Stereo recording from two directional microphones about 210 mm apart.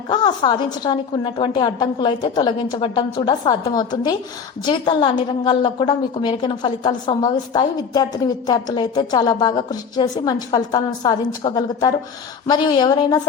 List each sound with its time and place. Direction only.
0.1 s a woman's voice: 20° left (ahead or behind)